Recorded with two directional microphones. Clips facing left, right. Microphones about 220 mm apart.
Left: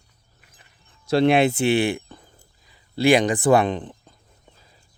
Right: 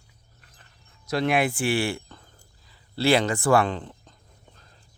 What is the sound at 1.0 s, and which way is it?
Speech, 30° left (ahead or behind).